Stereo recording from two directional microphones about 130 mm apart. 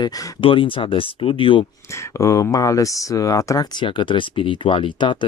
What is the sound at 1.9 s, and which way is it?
Speech, 25° left (ahead or behind).